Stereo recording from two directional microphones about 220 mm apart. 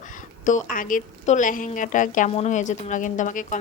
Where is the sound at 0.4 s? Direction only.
35° left (ahead or behind).